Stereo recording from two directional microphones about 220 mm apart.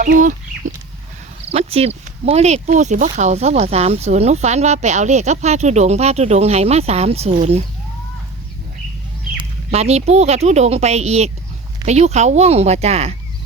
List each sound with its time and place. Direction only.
0.0 s chicken: 35° right (ahead or behind)
1.5 s speech: 25° right (ahead or behind)
9.4 s speech: 30° right (ahead or behind)